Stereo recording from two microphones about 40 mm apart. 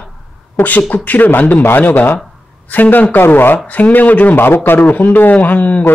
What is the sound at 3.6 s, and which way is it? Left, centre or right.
Speech, left.